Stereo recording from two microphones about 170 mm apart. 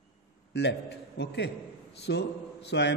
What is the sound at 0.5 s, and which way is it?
A man's voice, 75° left (ahead or behind).